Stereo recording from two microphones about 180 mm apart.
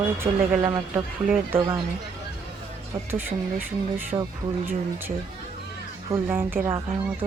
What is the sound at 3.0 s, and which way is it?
Speech, 10° right (ahead or behind).